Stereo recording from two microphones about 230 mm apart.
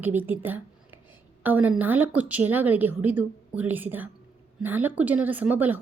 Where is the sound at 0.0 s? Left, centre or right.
Centre.